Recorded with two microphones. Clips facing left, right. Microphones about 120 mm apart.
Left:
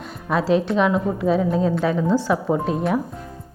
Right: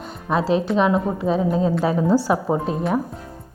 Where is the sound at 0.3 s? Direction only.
Centre (ahead or behind).